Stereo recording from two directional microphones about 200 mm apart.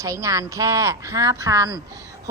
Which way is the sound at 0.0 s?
15° right (ahead or behind).